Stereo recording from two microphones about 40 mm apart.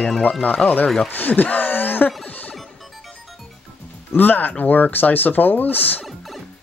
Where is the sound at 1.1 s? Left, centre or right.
Left.